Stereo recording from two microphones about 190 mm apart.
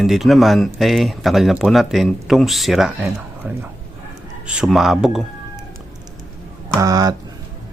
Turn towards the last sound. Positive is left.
turn(degrees=-20)  # may be behind; listen again after turning